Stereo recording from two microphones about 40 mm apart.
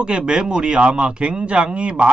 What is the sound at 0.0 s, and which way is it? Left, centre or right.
Speech, right.